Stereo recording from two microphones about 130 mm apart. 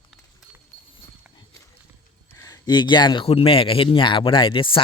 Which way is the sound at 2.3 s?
25° left (ahead or behind).